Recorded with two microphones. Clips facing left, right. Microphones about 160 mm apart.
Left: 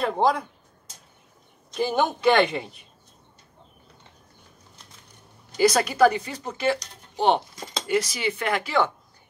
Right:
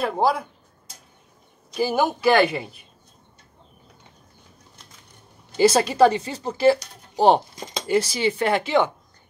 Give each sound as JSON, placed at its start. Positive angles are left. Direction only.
{"t": 0.0, "sound": "a man's voice", "side_deg": -5}
{"t": 1.7, "sound": "a man's voice", "side_deg": -5}
{"t": 5.6, "sound": "speech", "side_deg": -30}